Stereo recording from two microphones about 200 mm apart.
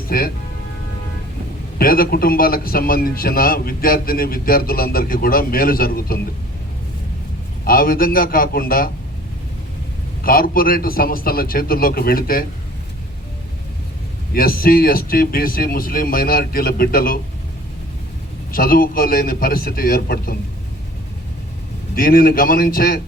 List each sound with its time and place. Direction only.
0.1 s a man's voice: 50° left (ahead or behind)
1.8 s a man's voice: 45° left (ahead or behind)
7.6 s a man's voice: 45° left (ahead or behind)
10.2 s a man's voice: 45° left (ahead or behind)
14.3 s a man's voice: 45° left (ahead or behind)
18.5 s a man's voice: 45° left (ahead or behind)
21.9 s a man's voice: 45° left (ahead or behind)